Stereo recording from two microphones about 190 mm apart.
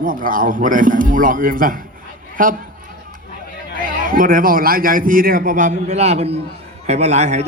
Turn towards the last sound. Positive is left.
turn(degrees=-35)  # may be behind; listen again after turning